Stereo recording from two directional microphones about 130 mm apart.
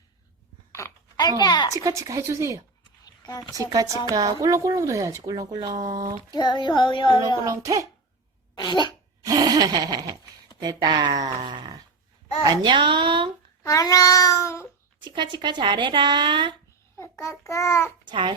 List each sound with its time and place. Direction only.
0.7 s a sound: 25° left (ahead or behind)
1.4 s child singing: 30° left (ahead or behind)
1.7 s speech: 25° right (ahead or behind)
3.0 s a sound: 30° left (ahead or behind)
3.5 s speech: 30° right (ahead or behind)
6.3 s child singing: 35° left (ahead or behind)
7.4 s speech: 25° right (ahead or behind)
8.5 s child singing: 35° left (ahead or behind)
9.2 s a sound: 30° right (ahead or behind)
10.6 s speech: 30° right (ahead or behind)
13.6 s babbling: 25° left (ahead or behind)
15.0 s speech: 35° right (ahead or behind)
17.0 s babbling: 25° left (ahead or behind)
18.0 s babbling: 35° right (ahead or behind)